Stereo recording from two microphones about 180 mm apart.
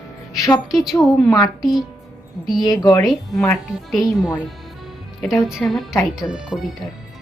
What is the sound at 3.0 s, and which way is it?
Speech, centre (ahead or behind).